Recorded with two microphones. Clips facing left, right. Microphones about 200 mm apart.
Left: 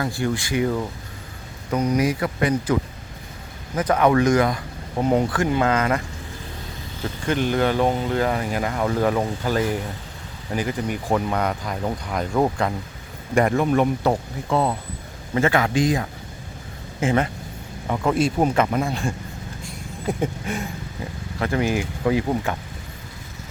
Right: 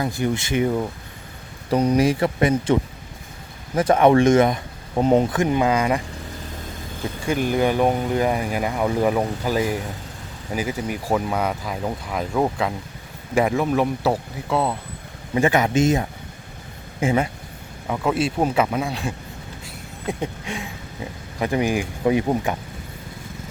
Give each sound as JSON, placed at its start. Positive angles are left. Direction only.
{"t": 0.0, "sound": "speech", "side_deg": -20}
{"t": 1.7, "sound": "speech", "side_deg": -30}
{"t": 3.8, "sound": "speech", "side_deg": -25}
{"t": 7.3, "sound": "speech", "side_deg": -10}
{"t": 15.4, "sound": "speech", "side_deg": -15}
{"t": 17.0, "sound": "speech", "side_deg": -10}
{"t": 17.8, "sound": "speech", "side_deg": 0}
{"t": 19.6, "sound": "a sound", "side_deg": 0}
{"t": 21.3, "sound": "speech", "side_deg": -15}